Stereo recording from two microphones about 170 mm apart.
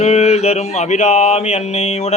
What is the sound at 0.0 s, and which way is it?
A man's voice, 40° left (ahead or behind).